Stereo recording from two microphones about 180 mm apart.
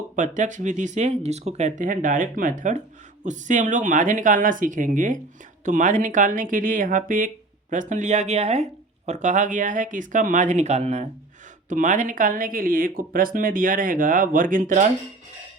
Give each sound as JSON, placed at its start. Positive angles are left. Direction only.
{"t": 0.2, "sound": "speech", "side_deg": -45}